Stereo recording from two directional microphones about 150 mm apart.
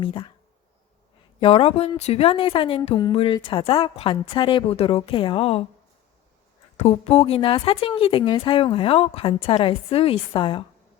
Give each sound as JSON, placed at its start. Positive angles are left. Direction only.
{"t": 0.0, "sound": "speech", "side_deg": 35}
{"t": 1.4, "sound": "speech", "side_deg": 40}
{"t": 6.7, "sound": "speech", "side_deg": 45}